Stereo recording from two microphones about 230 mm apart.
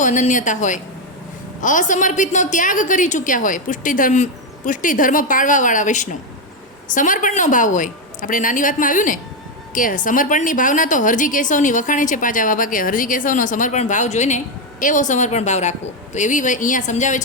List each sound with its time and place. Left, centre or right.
0.0 s a woman's voice: left